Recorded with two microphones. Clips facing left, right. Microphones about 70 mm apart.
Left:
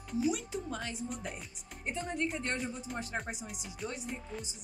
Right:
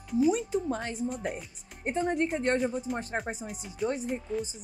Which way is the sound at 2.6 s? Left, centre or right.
Centre.